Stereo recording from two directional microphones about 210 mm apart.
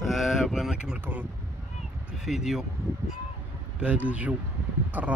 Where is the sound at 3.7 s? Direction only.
5° right (ahead or behind).